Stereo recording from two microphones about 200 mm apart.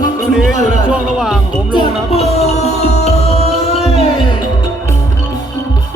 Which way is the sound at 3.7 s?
30° left (ahead or behind).